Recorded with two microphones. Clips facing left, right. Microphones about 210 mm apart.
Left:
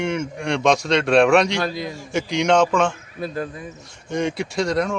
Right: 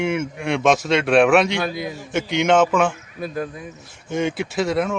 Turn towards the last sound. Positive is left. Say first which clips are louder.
# even
turn(degrees=-5)  # may be behind; listen again after turning